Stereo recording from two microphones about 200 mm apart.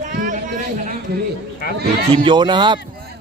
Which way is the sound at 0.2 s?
40° right (ahead or behind).